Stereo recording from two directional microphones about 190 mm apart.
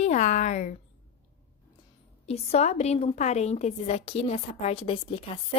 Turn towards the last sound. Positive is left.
turn(degrees=30)  # may be behind; listen again after turning